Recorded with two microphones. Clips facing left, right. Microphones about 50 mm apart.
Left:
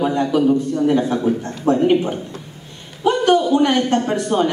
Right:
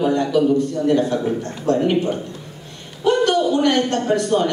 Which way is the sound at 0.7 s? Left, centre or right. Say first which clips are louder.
Left 1 dB; centre.